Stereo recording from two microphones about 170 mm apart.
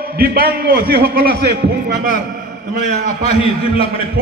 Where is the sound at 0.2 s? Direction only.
65° right (ahead or behind).